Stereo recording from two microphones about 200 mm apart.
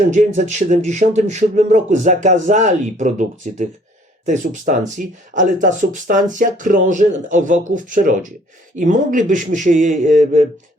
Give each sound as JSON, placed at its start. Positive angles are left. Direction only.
{"t": 0.1, "sound": "speech", "side_deg": -40}